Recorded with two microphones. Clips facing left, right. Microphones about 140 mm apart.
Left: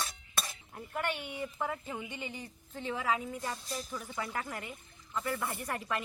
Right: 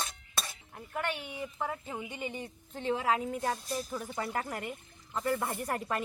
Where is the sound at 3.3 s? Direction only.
55° right (ahead or behind).